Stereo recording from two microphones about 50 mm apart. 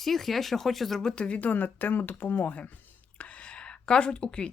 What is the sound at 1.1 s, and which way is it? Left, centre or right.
Speech, left.